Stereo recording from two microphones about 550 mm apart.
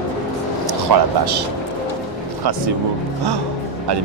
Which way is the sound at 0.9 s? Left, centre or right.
Right.